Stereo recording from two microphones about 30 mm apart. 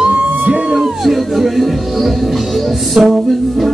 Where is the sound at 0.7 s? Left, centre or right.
Centre.